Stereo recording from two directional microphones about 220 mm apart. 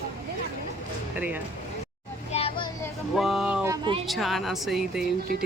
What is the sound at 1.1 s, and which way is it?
Speech, 5° right (ahead or behind).